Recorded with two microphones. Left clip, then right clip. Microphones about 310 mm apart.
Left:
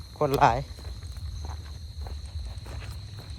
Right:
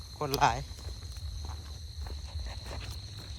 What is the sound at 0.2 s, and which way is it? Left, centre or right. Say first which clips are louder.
Speech: left 6 dB; centre.